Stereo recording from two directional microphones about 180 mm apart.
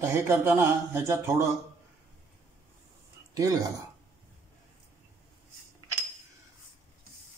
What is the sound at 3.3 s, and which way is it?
Speech, 20° right (ahead or behind).